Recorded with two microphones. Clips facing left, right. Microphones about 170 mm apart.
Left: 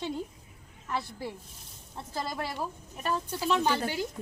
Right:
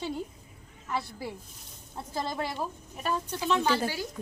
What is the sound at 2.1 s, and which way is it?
Speech, 20° right (ahead or behind).